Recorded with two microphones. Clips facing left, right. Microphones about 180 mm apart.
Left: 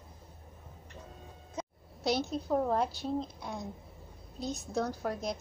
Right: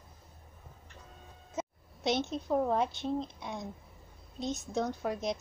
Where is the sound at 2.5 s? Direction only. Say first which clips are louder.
Right 1 dB; centre (ahead or behind).